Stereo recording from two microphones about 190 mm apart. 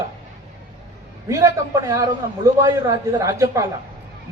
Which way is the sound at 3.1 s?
15° right (ahead or behind).